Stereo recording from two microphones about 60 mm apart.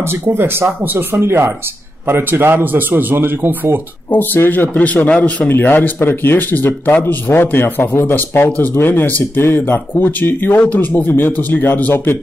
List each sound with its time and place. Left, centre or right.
0.1 s a man's voice: right
4.1 s a man's voice: left
5.5 s a man's voice: left
10.7 s a man's voice: left